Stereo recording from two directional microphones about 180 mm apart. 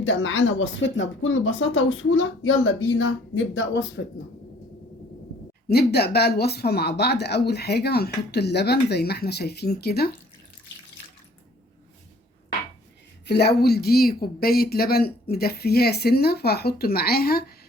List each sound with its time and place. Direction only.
0.0 s speech: 90° left; by 4.0 s 70° left (ahead or behind)
5.6 s speech: 60° left (ahead or behind)
13.2 s speech: 65° left (ahead or behind)